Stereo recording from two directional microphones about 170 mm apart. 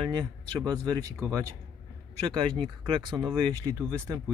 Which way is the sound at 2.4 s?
30° right (ahead or behind).